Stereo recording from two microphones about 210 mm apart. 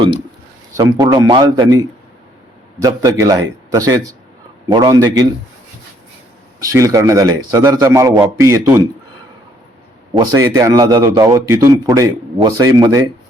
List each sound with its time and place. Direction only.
0.8 s speech: 15° right (ahead or behind)
2.8 s a man's voice: 15° right (ahead or behind)
6.6 s a man's voice: 15° right (ahead or behind)
10.2 s a man's voice: 15° right (ahead or behind)